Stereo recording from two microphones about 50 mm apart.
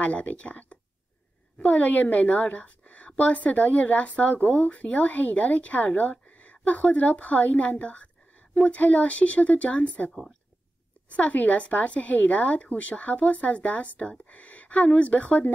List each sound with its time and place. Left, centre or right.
0.0 s a woman's voice: left